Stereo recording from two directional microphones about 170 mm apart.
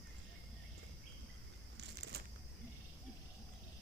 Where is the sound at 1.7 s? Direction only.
80° right.